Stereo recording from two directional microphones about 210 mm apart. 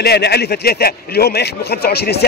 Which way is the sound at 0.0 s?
50° left (ahead or behind).